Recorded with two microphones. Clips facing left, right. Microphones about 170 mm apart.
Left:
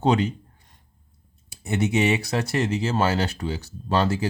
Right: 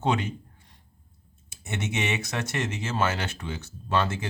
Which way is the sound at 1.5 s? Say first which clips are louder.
Left 8 dB; 35° left (ahead or behind).